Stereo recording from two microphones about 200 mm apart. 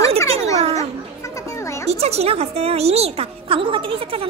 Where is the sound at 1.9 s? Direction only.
30° right (ahead or behind).